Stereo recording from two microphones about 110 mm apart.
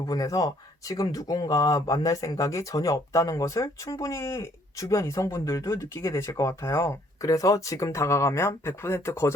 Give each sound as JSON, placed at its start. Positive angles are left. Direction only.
{"t": 0.0, "sound": "speech", "side_deg": 30}